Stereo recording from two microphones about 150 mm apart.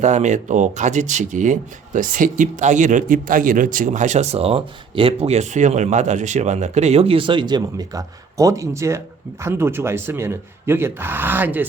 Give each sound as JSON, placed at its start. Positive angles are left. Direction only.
{"t": 0.0, "sound": "speech", "side_deg": -50}